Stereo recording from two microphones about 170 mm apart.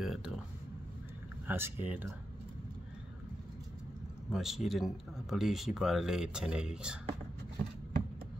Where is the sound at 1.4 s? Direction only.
10° right (ahead or behind).